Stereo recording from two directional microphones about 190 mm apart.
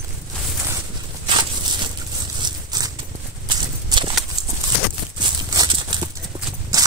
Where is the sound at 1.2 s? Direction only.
25° right (ahead or behind).